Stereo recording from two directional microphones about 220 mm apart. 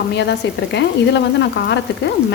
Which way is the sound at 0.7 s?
50° left (ahead or behind).